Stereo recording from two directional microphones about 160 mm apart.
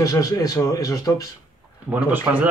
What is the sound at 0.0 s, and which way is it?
Speech, 20° left (ahead or behind).